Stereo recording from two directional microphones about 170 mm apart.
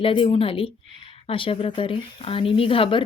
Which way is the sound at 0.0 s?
30° left (ahead or behind).